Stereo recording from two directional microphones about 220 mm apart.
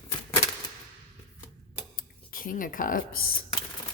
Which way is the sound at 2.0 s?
40° left (ahead or behind).